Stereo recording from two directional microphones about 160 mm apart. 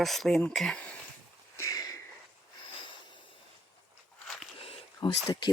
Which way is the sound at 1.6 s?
20° left (ahead or behind).